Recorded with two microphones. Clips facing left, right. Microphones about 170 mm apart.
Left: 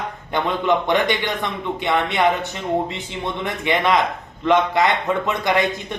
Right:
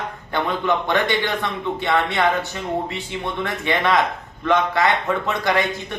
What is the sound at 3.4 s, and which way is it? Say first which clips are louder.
A man's voice: left 2 dB; 20° left (ahead or behind).